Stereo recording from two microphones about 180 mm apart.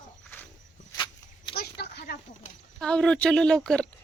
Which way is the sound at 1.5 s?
60° left (ahead or behind).